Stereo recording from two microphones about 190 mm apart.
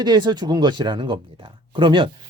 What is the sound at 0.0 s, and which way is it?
A man's voice, 25° right (ahead or behind).